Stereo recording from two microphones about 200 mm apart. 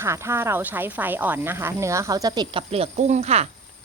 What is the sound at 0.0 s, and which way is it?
Speech, 15° right (ahead or behind).